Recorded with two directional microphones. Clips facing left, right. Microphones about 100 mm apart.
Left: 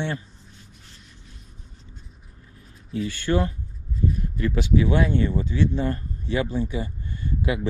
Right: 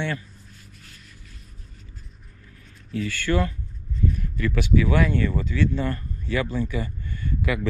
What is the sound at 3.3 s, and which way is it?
Speech, 25° left (ahead or behind).